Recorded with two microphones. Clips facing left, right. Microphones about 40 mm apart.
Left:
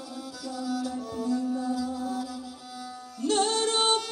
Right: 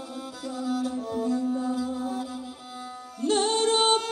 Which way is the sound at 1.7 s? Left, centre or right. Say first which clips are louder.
Right 1 dB; right.